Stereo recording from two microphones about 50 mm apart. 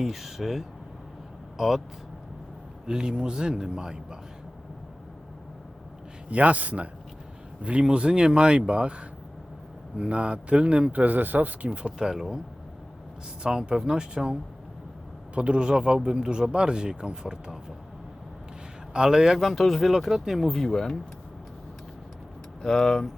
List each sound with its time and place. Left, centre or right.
0.0 s speech: centre
2.8 s speech: centre
6.3 s speech: right
11.0 s speech: right
11.9 s speech: centre
13.4 s speech: centre
15.4 s speech: right
18.9 s speech: centre
20.6 s speech: centre
22.6 s speech: centre